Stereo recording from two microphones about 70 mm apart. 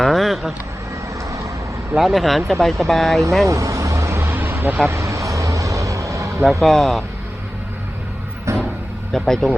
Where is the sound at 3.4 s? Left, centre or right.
Right.